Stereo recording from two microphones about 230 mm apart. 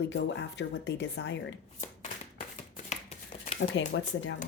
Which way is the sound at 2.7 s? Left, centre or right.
Left.